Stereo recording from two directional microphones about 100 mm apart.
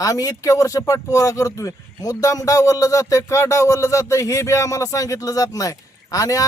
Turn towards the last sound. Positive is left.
turn(degrees=35)  # may be behind; listen again after turning